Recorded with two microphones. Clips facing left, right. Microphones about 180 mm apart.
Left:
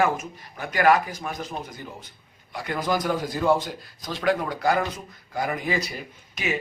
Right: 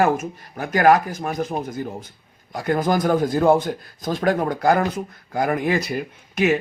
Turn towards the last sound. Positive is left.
turn(degrees=-50)  # may be behind; listen again after turning